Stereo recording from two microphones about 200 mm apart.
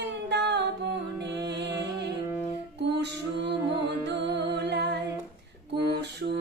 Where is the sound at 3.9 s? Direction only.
60° right (ahead or behind).